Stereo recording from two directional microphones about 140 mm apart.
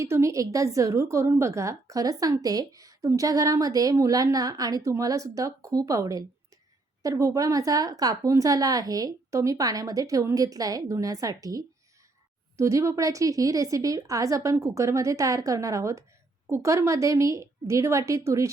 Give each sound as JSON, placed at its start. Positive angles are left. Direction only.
{"t": 0.0, "sound": "a woman's voice", "side_deg": -20}